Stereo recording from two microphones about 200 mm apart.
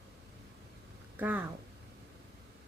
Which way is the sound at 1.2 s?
10° right (ahead or behind).